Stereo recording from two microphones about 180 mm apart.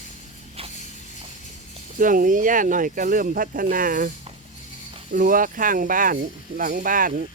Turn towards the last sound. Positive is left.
turn(degrees=-50)  # may be behind; listen again after turning